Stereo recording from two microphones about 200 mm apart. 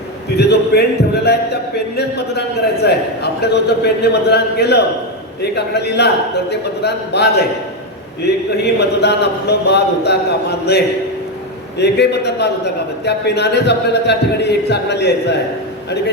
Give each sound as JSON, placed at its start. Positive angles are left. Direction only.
{"t": 0.3, "sound": "a man's voice", "side_deg": 55}